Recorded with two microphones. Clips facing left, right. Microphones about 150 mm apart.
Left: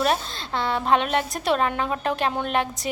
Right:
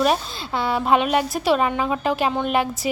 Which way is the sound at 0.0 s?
5° right (ahead or behind).